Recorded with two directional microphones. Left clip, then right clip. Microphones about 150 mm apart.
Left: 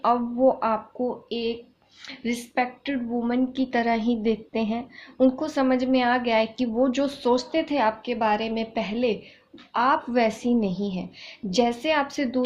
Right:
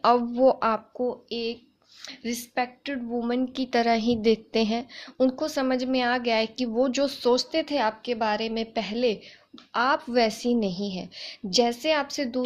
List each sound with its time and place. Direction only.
0.0 s a woman's voice: 55° right (ahead or behind); by 12.4 s 40° right (ahead or behind)